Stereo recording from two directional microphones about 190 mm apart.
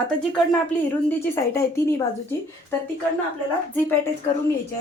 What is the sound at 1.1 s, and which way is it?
Speech, 15° left (ahead or behind).